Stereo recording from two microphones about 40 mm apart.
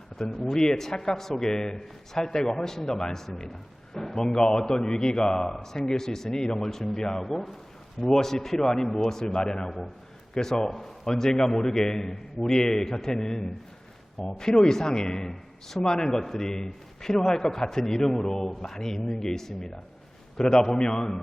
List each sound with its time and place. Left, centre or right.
0.3 s a man's voice: centre
4.2 s a man's voice: centre